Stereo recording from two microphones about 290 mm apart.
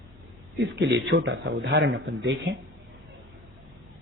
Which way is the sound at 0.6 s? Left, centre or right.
Right.